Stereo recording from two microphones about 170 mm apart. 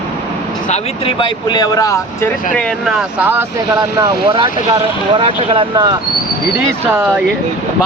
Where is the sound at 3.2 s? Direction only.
15° right (ahead or behind).